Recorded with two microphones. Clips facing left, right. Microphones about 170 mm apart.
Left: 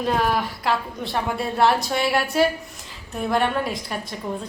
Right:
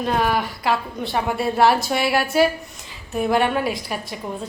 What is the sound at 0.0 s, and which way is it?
A woman's voice, centre (ahead or behind).